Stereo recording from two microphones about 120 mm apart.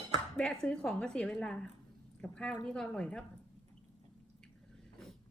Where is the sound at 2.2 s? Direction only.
5° left (ahead or behind).